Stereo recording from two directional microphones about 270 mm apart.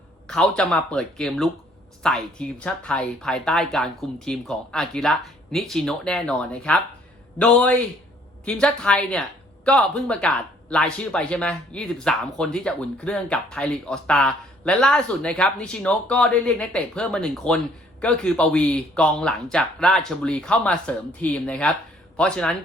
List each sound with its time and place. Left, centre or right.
0.3 s speech: centre